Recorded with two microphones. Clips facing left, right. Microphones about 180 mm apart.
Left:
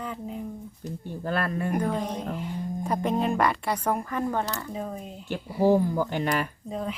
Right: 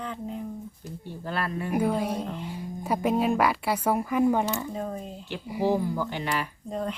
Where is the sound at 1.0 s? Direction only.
50° left (ahead or behind).